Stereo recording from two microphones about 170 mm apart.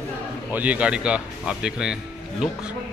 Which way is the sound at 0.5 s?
10° right (ahead or behind).